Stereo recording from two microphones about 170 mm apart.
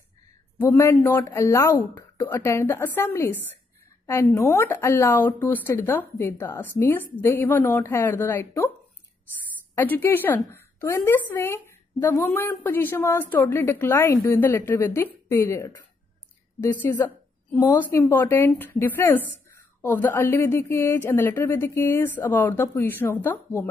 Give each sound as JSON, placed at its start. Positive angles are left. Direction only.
{"t": 0.7, "sound": "speech", "side_deg": 15}
{"t": 4.0, "sound": "a sound", "side_deg": 15}
{"t": 4.4, "sound": "speech", "side_deg": 15}
{"t": 9.8, "sound": "speech", "side_deg": 10}
{"t": 16.8, "sound": "speech", "side_deg": 10}